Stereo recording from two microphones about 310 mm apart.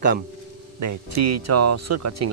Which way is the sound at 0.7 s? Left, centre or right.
Right.